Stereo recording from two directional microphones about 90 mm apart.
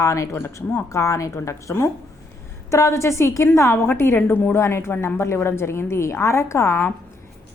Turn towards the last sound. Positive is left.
turn(degrees=30)  # may be behind; listen again after turning